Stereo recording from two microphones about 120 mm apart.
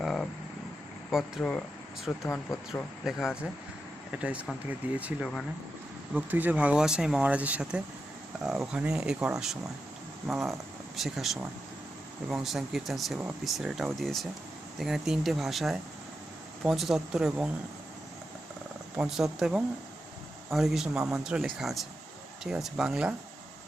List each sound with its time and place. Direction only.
0.0 s vehicle: centre (ahead or behind)
1.1 s speech: 5° left (ahead or behind)
2.2 s speech: 25° left (ahead or behind)
3.0 s speech: 5° right (ahead or behind)
18.9 s speech: 5° right (ahead or behind)